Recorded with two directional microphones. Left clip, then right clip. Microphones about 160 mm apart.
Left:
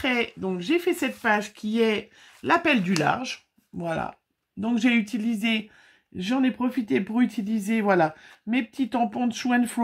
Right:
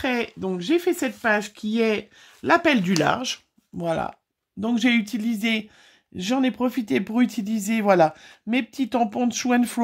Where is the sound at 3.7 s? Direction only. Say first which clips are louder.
Right 4 dB; 35° right (ahead or behind).